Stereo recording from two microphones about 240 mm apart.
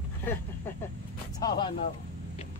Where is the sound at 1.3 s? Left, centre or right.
Centre.